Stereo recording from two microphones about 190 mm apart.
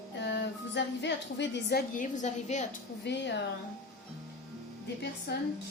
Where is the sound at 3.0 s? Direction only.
70° left (ahead or behind).